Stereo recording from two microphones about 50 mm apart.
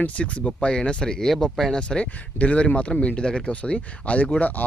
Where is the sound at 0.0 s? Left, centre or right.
Left.